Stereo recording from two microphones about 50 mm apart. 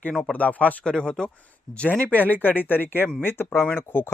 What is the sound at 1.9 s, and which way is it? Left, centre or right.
Speech, left.